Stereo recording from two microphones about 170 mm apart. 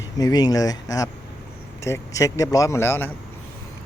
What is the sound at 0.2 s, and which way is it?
Speech, 20° left (ahead or behind).